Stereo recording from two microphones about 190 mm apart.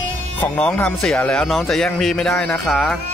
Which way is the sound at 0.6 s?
5° left (ahead or behind).